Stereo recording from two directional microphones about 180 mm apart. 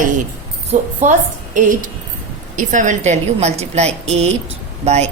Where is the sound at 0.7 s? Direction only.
35° right (ahead or behind).